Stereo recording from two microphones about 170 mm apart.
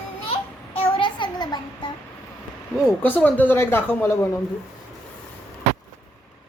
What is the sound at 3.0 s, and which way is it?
Speech, 10° left (ahead or behind).